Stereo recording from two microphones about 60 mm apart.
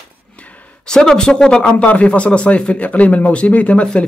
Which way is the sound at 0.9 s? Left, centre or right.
Centre.